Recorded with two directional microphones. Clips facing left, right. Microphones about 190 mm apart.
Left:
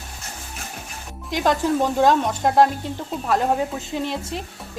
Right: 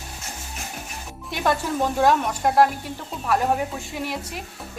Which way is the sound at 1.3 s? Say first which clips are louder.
Left 4 dB; 20° left (ahead or behind).